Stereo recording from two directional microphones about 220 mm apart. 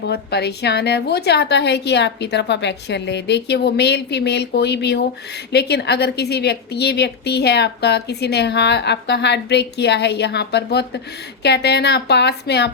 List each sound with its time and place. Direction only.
0.1 s a woman's voice: 50° left (ahead or behind)